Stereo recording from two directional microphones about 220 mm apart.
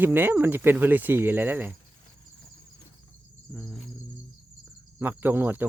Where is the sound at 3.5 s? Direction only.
5° right (ahead or behind).